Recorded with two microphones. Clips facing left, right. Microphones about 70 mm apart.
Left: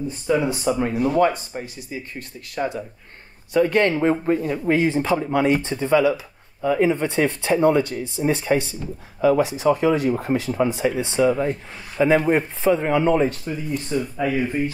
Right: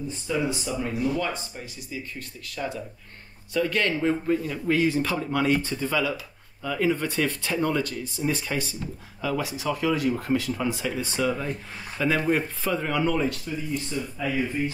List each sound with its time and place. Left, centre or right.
0.3 s speech: left